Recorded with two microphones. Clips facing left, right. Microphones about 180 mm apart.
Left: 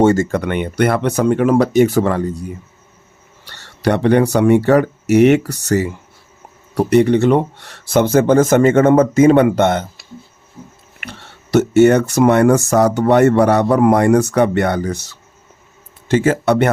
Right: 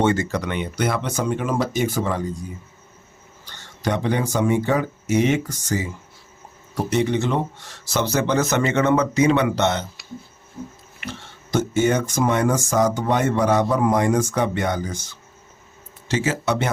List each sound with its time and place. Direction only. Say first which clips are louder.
0.0 s speech: left 7 dB; 45° left (ahead or behind)
10.6 s pig: right 3 dB; 10° left (ahead or behind)
11.0 s speech: right 1 dB; 65° left (ahead or behind)
16.0 s speech: left 8 dB; 55° left (ahead or behind)